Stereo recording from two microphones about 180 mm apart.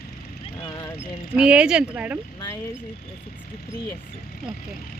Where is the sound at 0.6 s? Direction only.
20° left (ahead or behind).